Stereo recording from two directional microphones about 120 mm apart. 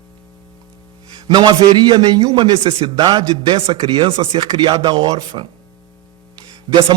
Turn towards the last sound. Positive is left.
turn(degrees=-40)  # may be behind; listen again after turning